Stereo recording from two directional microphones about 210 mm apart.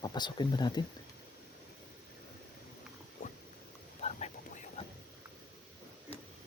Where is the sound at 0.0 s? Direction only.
20° left (ahead or behind).